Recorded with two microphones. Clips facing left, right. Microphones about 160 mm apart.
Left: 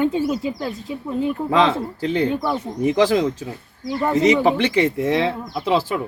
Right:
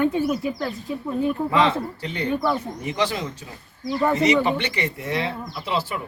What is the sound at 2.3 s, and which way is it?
Speech, 20° left (ahead or behind).